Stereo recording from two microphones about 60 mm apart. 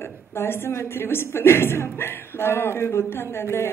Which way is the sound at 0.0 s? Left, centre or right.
Left.